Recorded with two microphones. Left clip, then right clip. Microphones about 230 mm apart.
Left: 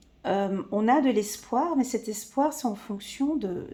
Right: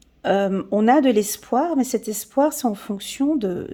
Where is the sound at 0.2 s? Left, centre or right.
Right.